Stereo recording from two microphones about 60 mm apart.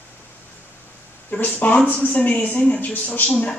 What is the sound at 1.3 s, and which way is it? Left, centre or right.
Speech, left.